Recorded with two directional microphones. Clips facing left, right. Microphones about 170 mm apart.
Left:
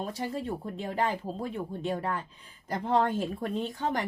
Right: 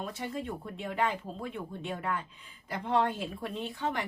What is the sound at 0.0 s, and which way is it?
Speech, 35° left (ahead or behind).